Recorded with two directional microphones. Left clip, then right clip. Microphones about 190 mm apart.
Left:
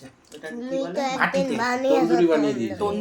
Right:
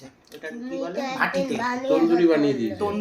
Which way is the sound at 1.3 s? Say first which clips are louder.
Left 2 dB; 80° left.